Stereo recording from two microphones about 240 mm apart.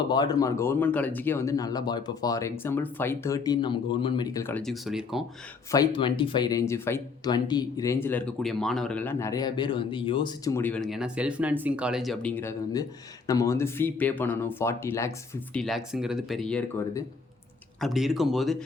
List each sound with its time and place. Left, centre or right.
0.1 s speech: centre
5.7 s speech: centre
15.5 s speech: centre